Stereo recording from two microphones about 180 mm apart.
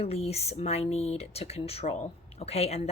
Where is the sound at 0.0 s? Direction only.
35° left (ahead or behind).